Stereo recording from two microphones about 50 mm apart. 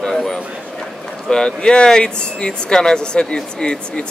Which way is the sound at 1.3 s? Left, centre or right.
Centre.